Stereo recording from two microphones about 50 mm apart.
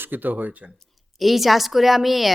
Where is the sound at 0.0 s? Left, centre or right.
Right.